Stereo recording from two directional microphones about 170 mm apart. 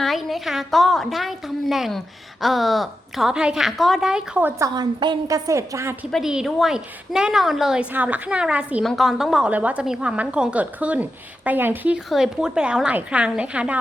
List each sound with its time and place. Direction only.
0.0 s a woman's voice: centre (ahead or behind)
4.6 s a woman's voice: 25° right (ahead or behind)
6.1 s a woman's voice: centre (ahead or behind)